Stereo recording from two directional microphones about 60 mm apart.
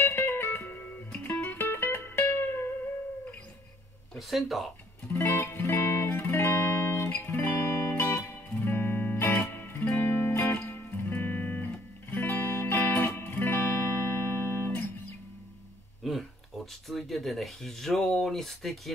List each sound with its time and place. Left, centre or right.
0.0 s music: left
4.3 s speech: centre
5.2 s music: left
16.0 s speech: centre